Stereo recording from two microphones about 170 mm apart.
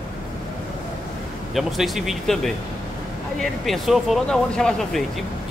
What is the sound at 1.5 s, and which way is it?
Speech, centre (ahead or behind).